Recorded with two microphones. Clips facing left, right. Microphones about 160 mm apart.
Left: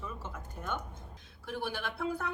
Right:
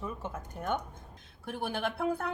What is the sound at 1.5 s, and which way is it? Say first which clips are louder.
Speech: right 3 dB; 50° right (ahead or behind).